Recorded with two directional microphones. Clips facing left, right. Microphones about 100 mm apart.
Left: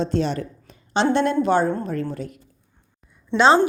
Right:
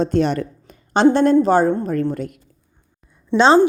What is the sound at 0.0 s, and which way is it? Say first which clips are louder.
Speech: right 5 dB; 55° right (ahead or behind).